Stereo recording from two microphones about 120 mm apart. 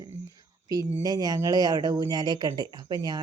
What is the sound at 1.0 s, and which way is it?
Speech, 30° right (ahead or behind).